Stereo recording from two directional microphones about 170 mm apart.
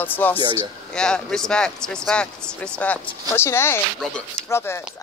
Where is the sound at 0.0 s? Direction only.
10° left (ahead or behind).